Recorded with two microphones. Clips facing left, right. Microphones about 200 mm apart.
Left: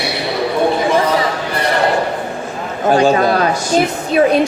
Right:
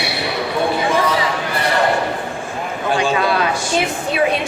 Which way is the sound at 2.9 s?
40° left (ahead or behind).